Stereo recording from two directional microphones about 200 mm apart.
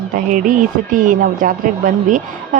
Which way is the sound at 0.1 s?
40° right (ahead or behind).